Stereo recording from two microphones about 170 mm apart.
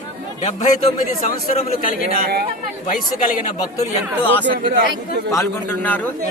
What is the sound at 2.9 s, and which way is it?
Speech, 55° left (ahead or behind).